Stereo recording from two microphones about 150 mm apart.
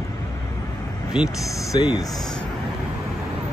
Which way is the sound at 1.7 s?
30° left (ahead or behind).